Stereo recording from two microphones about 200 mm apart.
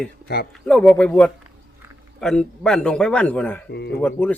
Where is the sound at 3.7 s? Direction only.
55° left (ahead or behind).